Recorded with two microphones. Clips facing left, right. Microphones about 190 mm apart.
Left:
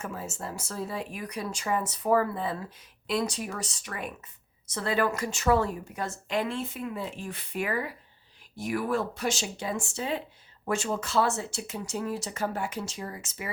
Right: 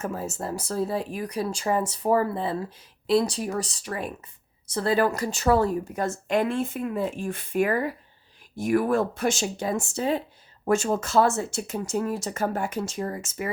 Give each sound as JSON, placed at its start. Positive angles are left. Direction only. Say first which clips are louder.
{"t": 0.0, "sound": "a woman's voice", "louder": "right 6 dB", "side_deg": -40}